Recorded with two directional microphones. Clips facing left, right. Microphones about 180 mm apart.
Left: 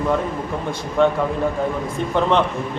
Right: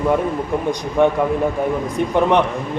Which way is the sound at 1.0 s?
15° right (ahead or behind).